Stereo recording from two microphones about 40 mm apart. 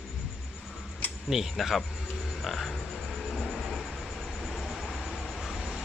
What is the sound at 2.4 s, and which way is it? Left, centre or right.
Croak, centre.